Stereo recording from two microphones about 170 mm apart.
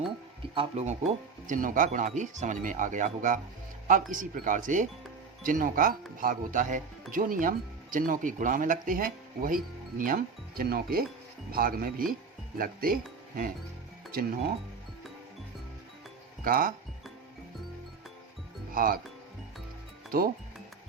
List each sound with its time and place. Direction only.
0.5 s speech: 35° right (ahead or behind); by 14.3 s 60° right (ahead or behind)
16.4 s speech: 55° right (ahead or behind)
18.7 s speech: 55° right (ahead or behind)
20.1 s speech: 60° right (ahead or behind)